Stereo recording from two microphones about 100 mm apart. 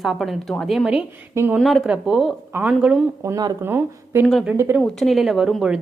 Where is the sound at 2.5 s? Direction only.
15° right (ahead or behind).